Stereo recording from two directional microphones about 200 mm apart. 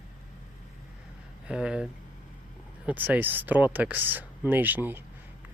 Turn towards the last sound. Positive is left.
turn(degrees=-10)  # may be behind; listen again after turning